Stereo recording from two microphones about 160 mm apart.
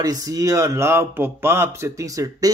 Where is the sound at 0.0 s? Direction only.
20° right (ahead or behind).